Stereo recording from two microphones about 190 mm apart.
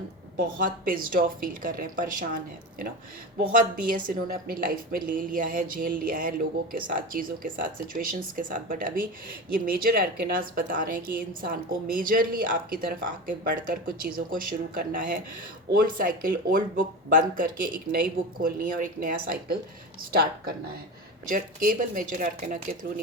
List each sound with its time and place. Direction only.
0.6 s a woman's voice: 45° right (ahead or behind)
3.6 s a woman's voice: 45° right (ahead or behind)